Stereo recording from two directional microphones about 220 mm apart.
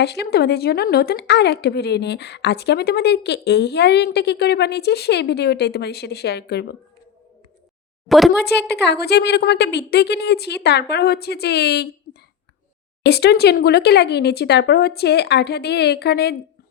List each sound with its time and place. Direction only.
0.0 s a woman's voice: 50° left (ahead or behind)
8.0 s speech: centre (ahead or behind)
8.4 s a woman's voice: 50° left (ahead or behind)
13.0 s a woman's voice: 45° left (ahead or behind)